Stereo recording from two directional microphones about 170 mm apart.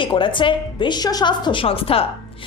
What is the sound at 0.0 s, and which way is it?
A woman's voice, 30° left (ahead or behind).